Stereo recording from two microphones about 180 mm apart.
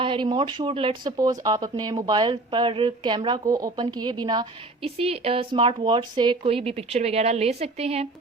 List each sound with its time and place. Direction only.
0.0 s speech: 25° right (ahead or behind)